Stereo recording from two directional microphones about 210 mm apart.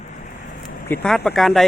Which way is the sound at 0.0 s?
35° left (ahead or behind).